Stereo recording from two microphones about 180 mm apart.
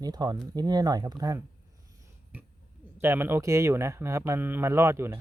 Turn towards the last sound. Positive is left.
turn(degrees=-15)  # may be behind; listen again after turning